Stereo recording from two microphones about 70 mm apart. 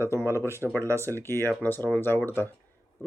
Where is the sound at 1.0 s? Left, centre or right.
Left.